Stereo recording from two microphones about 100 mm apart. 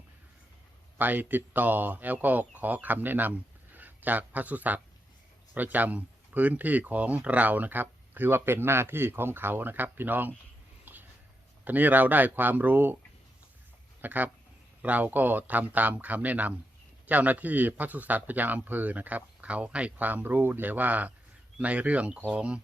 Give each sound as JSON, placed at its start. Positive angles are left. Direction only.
{"t": 0.9, "sound": "speech", "side_deg": -20}
{"t": 10.9, "sound": "a sound", "side_deg": -20}
{"t": 11.6, "sound": "speech", "side_deg": -15}
{"t": 14.0, "sound": "speech", "side_deg": -15}